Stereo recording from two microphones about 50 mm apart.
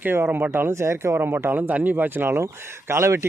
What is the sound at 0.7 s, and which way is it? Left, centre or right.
Speech, right.